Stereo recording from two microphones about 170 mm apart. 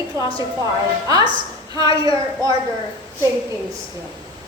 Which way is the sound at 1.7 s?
20° right (ahead or behind).